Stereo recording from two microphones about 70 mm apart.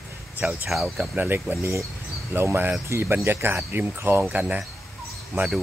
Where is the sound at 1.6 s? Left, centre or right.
Right.